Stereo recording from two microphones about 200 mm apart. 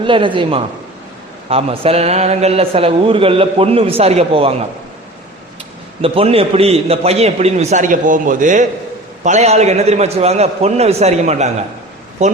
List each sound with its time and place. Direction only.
0.0 s a man's voice: 25° right (ahead or behind)
6.0 s a man's voice: 30° right (ahead or behind)